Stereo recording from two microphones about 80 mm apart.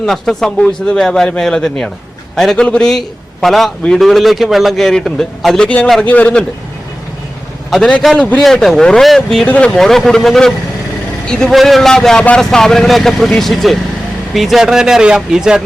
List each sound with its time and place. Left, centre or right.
0.0 s a man's voice: centre
5.6 s a man's voice: centre
7.7 s a man's voice: centre
9.5 s a man's voice: centre
9.7 s a man's voice: centre